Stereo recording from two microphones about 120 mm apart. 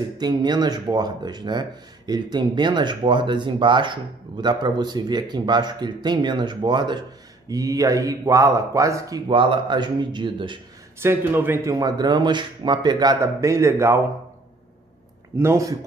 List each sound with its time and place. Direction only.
0.2 s speech: 35° right (ahead or behind)
9.3 s speech: 45° right (ahead or behind)
11.0 s a man's voice: 20° right (ahead or behind)
11.7 s speech: 35° right (ahead or behind)
15.3 s a man's voice: 25° right (ahead or behind)